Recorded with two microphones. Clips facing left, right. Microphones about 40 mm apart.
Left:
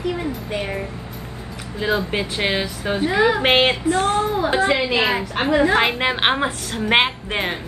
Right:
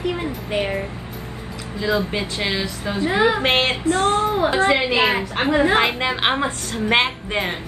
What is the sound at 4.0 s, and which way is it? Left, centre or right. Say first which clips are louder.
Speech: right 1 dB; right.